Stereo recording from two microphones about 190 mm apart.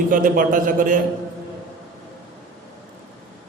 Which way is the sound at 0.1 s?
45° right (ahead or behind).